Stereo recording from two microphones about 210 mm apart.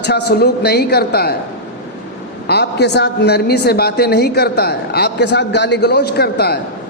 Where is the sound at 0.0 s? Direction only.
50° left (ahead or behind).